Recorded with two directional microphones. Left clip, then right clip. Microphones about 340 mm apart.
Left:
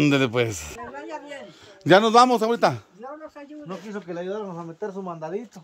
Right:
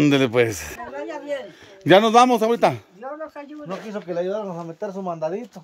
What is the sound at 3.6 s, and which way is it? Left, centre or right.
Speech, right.